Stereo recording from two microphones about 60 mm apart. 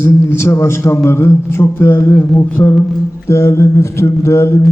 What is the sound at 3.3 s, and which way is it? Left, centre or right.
Speech, left.